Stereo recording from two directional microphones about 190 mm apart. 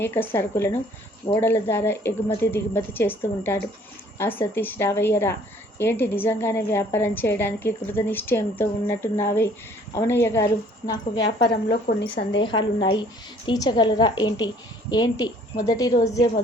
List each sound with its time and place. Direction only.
0.0 s a woman's voice: 10° left (ahead or behind)
11.3 s a woman's voice: 60° left (ahead or behind)
12.4 s a woman's voice: 25° left (ahead or behind)